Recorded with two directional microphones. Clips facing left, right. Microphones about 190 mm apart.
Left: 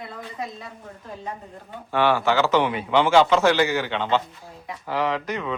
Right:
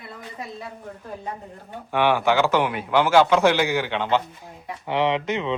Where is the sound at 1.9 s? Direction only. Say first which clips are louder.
Right 1 dB; 15° right (ahead or behind).